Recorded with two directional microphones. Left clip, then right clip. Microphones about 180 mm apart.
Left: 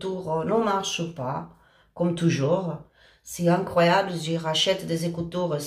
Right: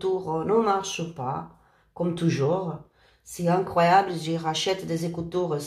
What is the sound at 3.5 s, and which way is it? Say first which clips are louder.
Speech: even; 25° right (ahead or behind).